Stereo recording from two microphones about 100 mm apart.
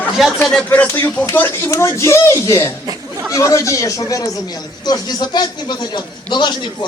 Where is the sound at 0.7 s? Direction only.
20° left (ahead or behind).